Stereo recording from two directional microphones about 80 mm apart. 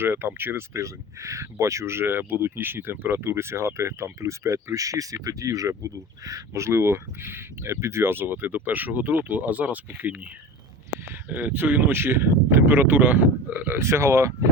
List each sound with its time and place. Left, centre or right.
0.0 s speech: right
13.7 s speech: right